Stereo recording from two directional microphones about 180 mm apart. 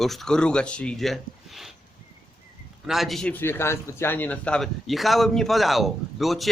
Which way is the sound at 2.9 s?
Centre (ahead or behind).